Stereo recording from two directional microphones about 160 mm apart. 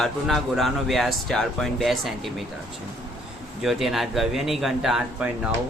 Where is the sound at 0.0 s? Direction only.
Centre (ahead or behind).